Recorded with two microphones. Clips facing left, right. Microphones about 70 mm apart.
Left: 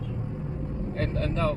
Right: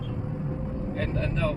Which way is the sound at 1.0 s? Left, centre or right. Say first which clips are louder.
Left 1 dB; centre.